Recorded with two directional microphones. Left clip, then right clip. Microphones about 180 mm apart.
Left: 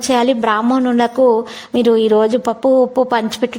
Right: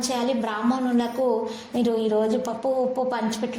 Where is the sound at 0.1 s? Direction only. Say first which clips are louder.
Left 15 dB; 45° left (ahead or behind).